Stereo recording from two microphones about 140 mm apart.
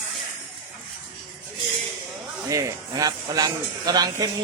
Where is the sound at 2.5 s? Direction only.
25° right (ahead or behind).